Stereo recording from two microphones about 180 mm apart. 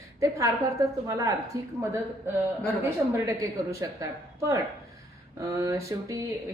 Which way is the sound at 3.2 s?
15° right (ahead or behind).